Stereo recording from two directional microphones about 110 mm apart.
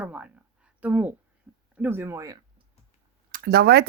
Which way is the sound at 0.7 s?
15° right (ahead or behind).